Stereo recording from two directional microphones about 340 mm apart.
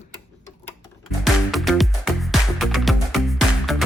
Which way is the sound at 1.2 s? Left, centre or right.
Centre.